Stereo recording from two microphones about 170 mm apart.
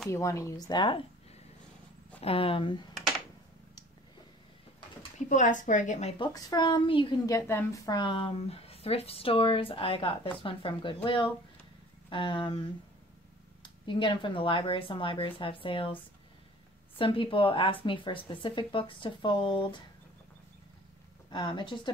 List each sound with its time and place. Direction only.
0.1 s speech: 15° left (ahead or behind)
2.2 s speech: 35° left (ahead or behind)
5.3 s a woman's voice: 50° left (ahead or behind)
6.1 s speech: 25° left (ahead or behind)
7.3 s speech: 15° left (ahead or behind)
12.1 s speech: 30° left (ahead or behind)
13.6 s speech: 30° left (ahead or behind)
17.0 s speech: 30° left (ahead or behind)
21.3 s speech: 25° left (ahead or behind)